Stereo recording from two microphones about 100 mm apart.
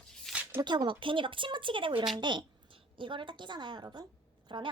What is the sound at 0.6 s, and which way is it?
A woman's voice, 50° right (ahead or behind).